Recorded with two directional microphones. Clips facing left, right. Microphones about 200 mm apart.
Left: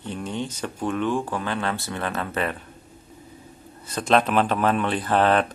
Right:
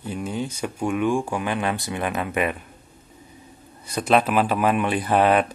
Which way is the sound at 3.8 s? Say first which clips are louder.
Right 1 dB; 10° right (ahead or behind).